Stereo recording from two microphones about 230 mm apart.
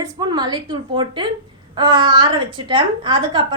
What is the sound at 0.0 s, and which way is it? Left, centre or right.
A woman's voice, centre.